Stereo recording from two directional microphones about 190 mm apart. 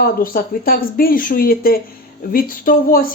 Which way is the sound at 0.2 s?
50° left (ahead or behind).